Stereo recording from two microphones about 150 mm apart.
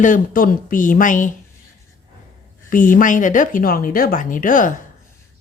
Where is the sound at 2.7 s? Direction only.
65° left (ahead or behind).